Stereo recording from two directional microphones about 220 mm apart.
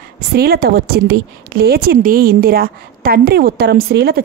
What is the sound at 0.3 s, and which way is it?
A woman's voice, 45° right (ahead or behind).